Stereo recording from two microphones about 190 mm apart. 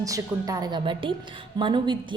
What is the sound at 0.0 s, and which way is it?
A woman's voice, 20° right (ahead or behind).